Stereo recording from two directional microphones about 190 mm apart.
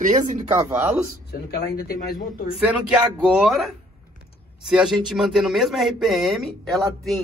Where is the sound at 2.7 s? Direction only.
5° right (ahead or behind).